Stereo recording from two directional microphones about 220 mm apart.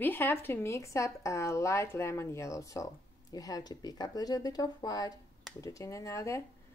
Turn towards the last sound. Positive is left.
turn(degrees=15)  # may be behind; listen again after turning